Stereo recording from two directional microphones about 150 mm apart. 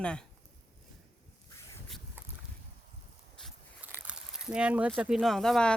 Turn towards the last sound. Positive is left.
turn(degrees=5)  # may be behind; listen again after turning